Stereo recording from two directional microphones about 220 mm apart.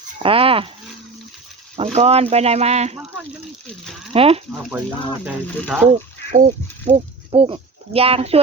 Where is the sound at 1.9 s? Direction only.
25° right (ahead or behind).